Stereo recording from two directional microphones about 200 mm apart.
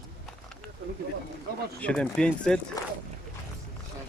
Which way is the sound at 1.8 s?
5° left (ahead or behind).